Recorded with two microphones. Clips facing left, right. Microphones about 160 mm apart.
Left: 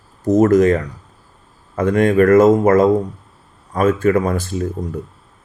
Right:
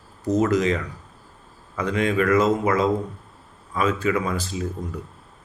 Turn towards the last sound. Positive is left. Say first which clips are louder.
# left 6 dB
turn(degrees=50)  # may be behind; listen again after turning